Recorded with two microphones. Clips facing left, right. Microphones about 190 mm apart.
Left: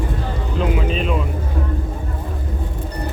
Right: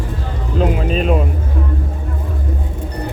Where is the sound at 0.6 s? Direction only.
40° right (ahead or behind).